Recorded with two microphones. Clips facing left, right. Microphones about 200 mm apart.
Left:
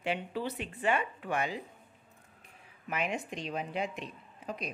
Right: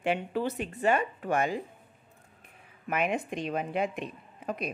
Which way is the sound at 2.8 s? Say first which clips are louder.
Right 5 dB; 55° right (ahead or behind).